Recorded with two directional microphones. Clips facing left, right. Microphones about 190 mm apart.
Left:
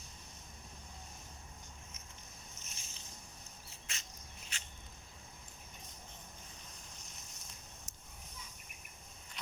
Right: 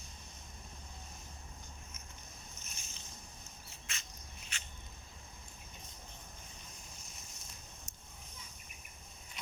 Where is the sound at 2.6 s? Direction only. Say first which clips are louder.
Right 1 dB; 90° left.